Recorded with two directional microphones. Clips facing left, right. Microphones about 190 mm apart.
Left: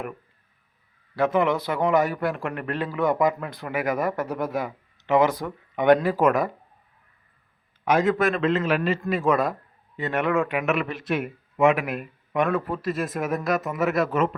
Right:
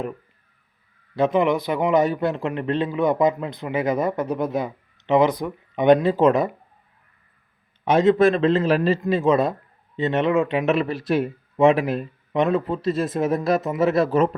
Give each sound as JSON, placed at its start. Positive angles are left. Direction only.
{"t": 1.1, "sound": "a man's voice", "side_deg": -20}
{"t": 7.9, "sound": "a man's voice", "side_deg": -25}